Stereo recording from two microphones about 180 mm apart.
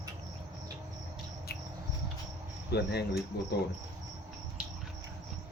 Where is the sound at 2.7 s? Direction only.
70° left (ahead or behind).